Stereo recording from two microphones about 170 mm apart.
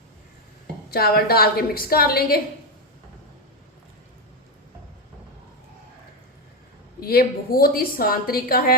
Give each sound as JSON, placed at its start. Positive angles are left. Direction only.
{"t": 0.9, "sound": "a woman's voice", "side_deg": 65}
{"t": 7.0, "sound": "a woman's voice", "side_deg": 65}